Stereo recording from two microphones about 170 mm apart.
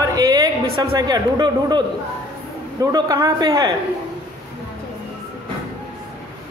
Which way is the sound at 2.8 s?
20° right (ahead or behind).